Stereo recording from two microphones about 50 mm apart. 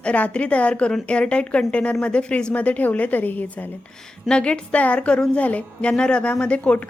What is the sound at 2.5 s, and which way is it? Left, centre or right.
A woman's voice, left.